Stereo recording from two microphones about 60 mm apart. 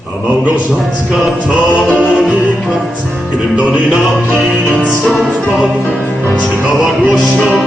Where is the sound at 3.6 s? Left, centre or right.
Centre.